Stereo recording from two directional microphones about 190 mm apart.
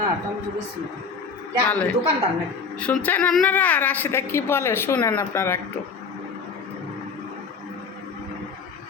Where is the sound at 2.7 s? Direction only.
10° left (ahead or behind).